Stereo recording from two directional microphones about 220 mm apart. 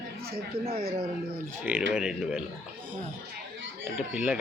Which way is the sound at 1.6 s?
5° right (ahead or behind).